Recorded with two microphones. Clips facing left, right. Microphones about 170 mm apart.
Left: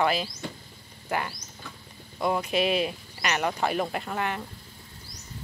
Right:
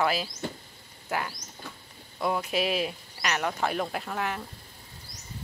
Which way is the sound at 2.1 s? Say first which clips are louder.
Left 2 dB; centre (ahead or behind).